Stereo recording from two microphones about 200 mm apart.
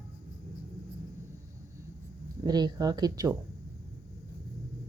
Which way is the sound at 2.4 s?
20° right (ahead or behind).